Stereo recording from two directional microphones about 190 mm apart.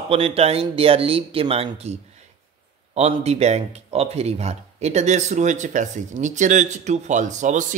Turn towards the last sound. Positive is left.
turn(degrees=-40)  # may be behind; listen again after turning